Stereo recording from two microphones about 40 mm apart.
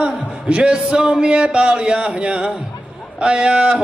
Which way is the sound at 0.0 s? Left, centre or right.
Right.